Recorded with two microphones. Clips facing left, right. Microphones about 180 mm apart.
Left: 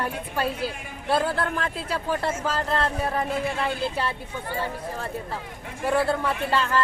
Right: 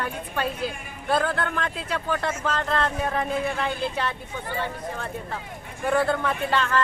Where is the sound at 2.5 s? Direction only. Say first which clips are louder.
Right 2 dB; 5° left (ahead or behind).